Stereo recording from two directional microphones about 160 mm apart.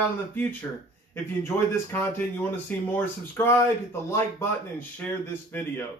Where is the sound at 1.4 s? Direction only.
15° left (ahead or behind).